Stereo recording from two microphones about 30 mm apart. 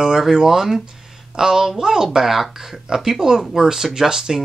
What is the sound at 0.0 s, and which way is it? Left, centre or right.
Speech, centre.